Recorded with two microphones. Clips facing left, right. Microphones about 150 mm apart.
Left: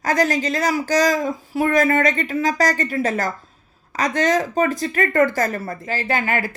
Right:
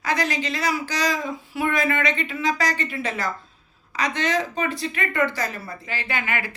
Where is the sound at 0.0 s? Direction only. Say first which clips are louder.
Left 6 dB; 45° left (ahead or behind).